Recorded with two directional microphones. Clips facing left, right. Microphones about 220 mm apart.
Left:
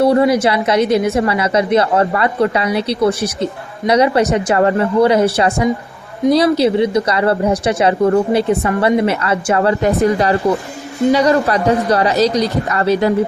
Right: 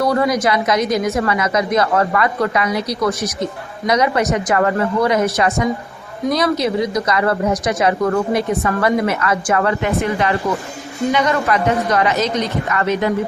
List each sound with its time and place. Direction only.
0.0 s a woman's voice: 30° left (ahead or behind)